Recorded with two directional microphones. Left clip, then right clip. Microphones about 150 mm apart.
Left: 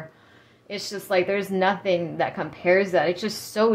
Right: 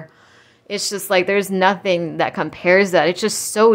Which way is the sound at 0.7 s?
45° right (ahead or behind).